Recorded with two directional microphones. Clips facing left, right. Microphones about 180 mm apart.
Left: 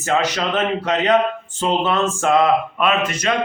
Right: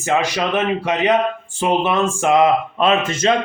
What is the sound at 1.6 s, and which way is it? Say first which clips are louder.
A man's voice: right 1 dB; 10° right (ahead or behind).